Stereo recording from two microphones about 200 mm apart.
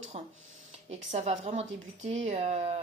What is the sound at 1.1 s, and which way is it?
Speech, 35° right (ahead or behind).